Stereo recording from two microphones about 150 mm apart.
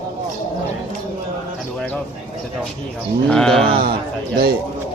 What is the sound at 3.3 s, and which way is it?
Speech, 5° left (ahead or behind).